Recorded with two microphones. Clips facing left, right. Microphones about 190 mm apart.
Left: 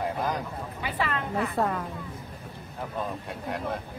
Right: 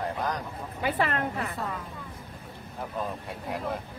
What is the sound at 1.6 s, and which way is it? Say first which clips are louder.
Speech: left 8 dB; 60° left (ahead or behind).